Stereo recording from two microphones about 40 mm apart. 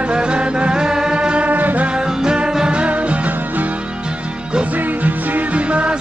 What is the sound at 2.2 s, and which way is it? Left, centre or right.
Music, centre.